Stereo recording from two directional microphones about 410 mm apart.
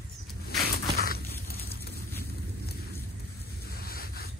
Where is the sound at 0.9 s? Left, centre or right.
Left.